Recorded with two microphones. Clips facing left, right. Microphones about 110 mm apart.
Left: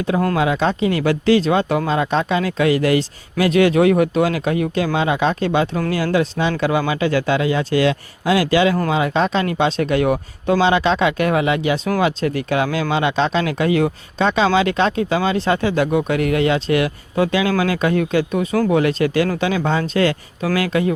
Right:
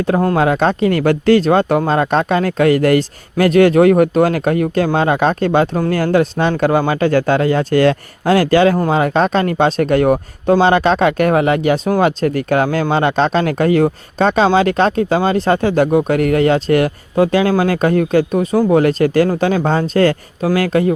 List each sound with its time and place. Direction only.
0.3 s speech: 50° right (ahead or behind)